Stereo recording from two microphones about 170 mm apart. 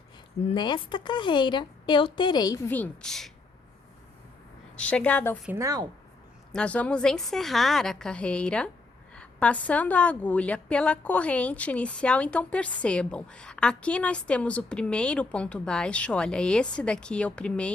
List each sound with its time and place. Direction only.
0.4 s a woman's voice: 25° left (ahead or behind)
2.6 s a woman's voice: 10° left (ahead or behind)
4.8 s a woman's voice: 5° left (ahead or behind)
5.5 s speech: 20° right (ahead or behind)
6.5 s a woman's voice: 5° left (ahead or behind)